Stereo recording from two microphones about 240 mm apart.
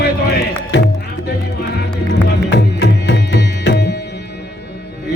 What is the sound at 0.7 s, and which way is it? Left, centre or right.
Music, left.